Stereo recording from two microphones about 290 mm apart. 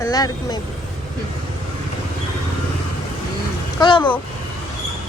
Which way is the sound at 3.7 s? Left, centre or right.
Centre.